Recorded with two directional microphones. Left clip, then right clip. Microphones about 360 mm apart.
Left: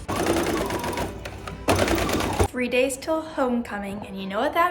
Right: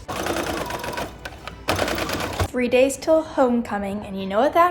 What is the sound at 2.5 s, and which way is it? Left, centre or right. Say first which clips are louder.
A woman's voice: right 5 dB; centre.